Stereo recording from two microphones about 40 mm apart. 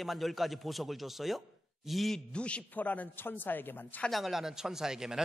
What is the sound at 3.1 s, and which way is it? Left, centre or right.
Speech, left.